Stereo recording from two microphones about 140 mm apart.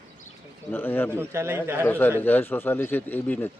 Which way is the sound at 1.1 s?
15° right (ahead or behind).